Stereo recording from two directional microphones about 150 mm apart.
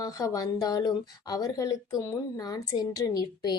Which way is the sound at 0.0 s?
25° left (ahead or behind).